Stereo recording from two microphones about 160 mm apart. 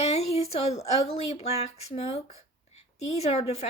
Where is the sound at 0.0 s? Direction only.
40° left (ahead or behind).